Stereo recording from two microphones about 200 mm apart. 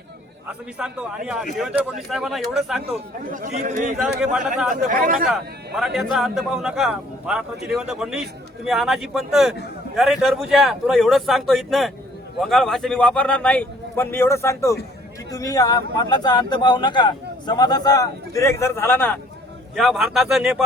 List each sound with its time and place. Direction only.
0.8 s speech: 5° right (ahead or behind)
3.2 s speech: 40° right (ahead or behind)
4.2 s speech: centre (ahead or behind)
4.7 s speech: 40° right (ahead or behind)
5.3 s a man's voice: centre (ahead or behind)